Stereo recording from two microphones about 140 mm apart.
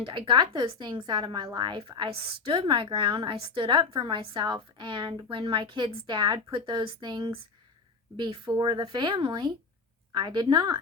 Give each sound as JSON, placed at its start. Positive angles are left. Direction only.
{"t": 0.0, "sound": "a woman's voice", "side_deg": -35}